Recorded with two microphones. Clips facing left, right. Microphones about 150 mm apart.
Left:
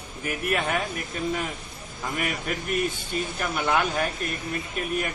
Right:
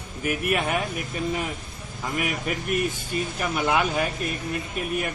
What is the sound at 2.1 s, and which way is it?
Speech, centre (ahead or behind).